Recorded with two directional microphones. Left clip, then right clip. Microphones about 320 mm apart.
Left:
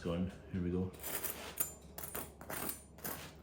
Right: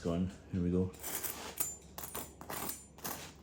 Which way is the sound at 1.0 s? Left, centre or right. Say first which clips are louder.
Right 1 dB; centre.